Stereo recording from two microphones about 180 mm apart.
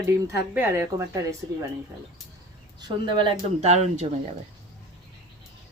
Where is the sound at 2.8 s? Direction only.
25° right (ahead or behind).